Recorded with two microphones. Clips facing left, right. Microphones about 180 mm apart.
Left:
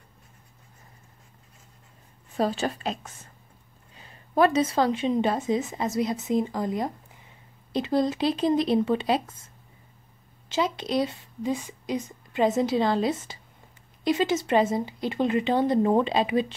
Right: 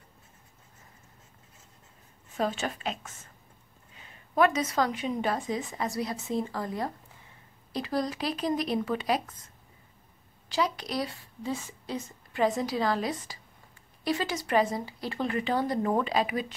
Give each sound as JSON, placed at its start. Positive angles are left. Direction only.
{"t": 2.3, "sound": "a woman's voice", "side_deg": 35}
{"t": 10.5, "sound": "a woman's voice", "side_deg": 25}